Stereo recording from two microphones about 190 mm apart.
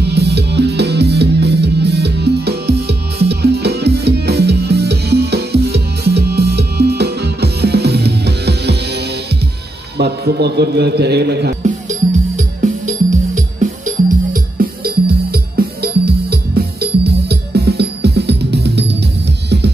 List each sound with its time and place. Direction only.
0.0 s music: 60° right (ahead or behind)
9.9 s a man's voice: 60° right (ahead or behind)
12.6 s music: 40° right (ahead or behind); by 18.9 s 60° right (ahead or behind)